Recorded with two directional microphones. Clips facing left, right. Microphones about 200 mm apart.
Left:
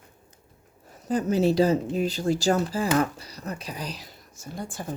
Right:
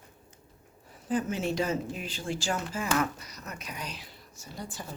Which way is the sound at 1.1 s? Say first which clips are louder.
Left 7 dB; 40° left (ahead or behind).